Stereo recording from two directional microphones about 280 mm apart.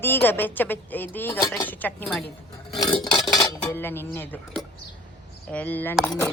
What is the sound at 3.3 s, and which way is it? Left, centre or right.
Cutlery, centre.